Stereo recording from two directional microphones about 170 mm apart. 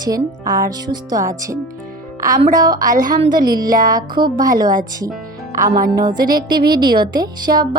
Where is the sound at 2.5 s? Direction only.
20° right (ahead or behind).